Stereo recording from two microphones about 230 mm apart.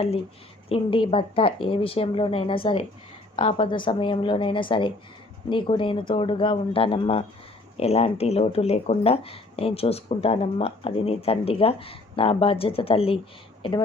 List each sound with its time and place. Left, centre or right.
0.7 s speech: left